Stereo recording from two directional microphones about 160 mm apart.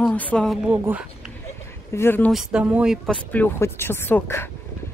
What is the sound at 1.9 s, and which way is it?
Speech, 15° left (ahead or behind).